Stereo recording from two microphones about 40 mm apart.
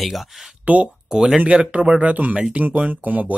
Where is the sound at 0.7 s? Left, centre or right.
Right.